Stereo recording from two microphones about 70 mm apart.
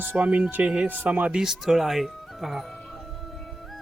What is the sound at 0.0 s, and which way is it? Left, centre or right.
Speech, right.